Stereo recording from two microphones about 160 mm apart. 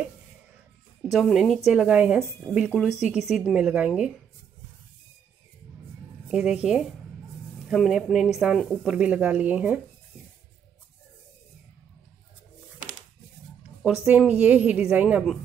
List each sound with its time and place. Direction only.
1.1 s speech: centre (ahead or behind)
6.2 s speech: 5° right (ahead or behind)
13.8 s a woman's voice: 5° right (ahead or behind)